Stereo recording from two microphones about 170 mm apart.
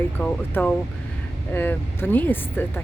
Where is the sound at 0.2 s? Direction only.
10° left (ahead or behind).